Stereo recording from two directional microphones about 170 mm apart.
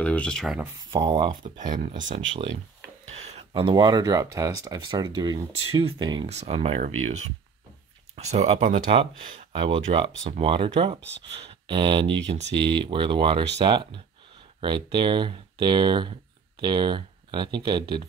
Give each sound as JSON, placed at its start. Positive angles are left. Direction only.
{"t": 0.0, "sound": "speech", "side_deg": 5}
{"t": 0.9, "sound": "speech", "side_deg": -30}
{"t": 2.0, "sound": "speech", "side_deg": -35}
{"t": 6.2, "sound": "speech", "side_deg": -35}
{"t": 8.7, "sound": "speech", "side_deg": -30}
{"t": 12.1, "sound": "speech", "side_deg": -90}
{"t": 12.5, "sound": "speech", "side_deg": -30}